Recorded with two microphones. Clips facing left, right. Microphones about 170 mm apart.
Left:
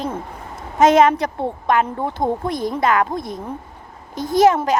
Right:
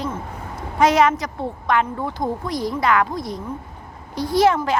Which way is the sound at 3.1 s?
20° left (ahead or behind).